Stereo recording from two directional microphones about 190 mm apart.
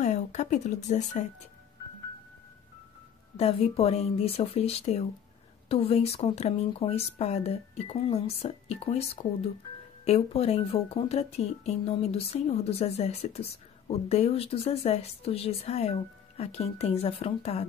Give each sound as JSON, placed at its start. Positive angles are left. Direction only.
{"t": 0.0, "sound": "speech", "side_deg": 40}
{"t": 3.3, "sound": "speech", "side_deg": 30}